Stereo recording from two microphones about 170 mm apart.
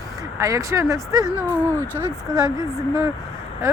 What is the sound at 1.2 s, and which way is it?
Speech, 20° left (ahead or behind).